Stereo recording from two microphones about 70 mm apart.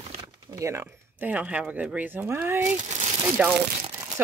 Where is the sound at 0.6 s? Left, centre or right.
Right.